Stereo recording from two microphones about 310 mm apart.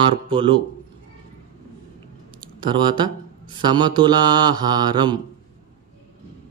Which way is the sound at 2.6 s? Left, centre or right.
Centre.